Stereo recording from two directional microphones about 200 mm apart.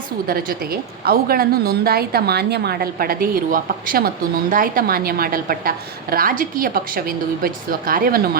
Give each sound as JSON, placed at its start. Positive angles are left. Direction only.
{"t": 0.3, "sound": "a woman's voice", "side_deg": -50}